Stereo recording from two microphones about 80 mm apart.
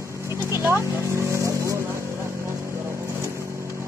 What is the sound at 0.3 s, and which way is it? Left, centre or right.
Vehicle, right.